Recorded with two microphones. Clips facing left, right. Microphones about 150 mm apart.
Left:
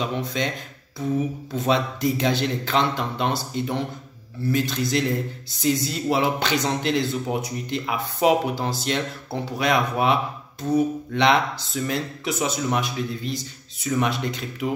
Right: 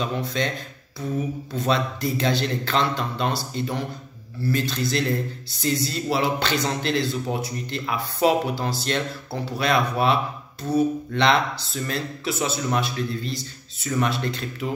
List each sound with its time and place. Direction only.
0.0 s speech: 15° left (ahead or behind)
1.5 s speech: 20° left (ahead or behind)